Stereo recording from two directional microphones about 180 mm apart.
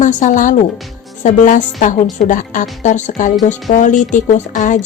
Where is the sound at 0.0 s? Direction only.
45° left (ahead or behind).